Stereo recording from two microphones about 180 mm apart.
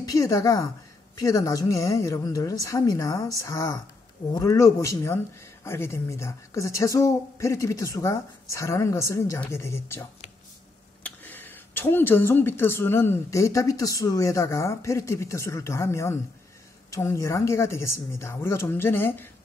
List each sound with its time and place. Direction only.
0.0 s a woman's voice: 20° left (ahead or behind)
11.1 s speech: 10° left (ahead or behind)